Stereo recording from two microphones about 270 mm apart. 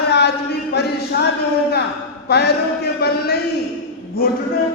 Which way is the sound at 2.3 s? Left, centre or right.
Left.